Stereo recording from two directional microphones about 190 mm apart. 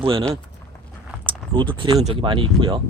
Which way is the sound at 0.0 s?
25° right (ahead or behind).